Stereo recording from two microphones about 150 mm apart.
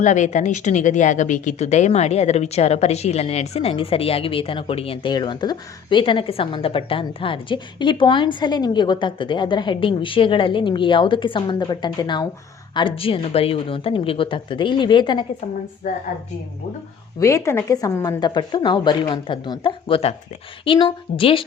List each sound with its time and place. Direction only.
0.0 s a woman's voice: 55° left (ahead or behind); by 15.2 s 30° left (ahead or behind)
17.2 s a woman's voice: 20° left (ahead or behind); by 21.4 s 35° left (ahead or behind)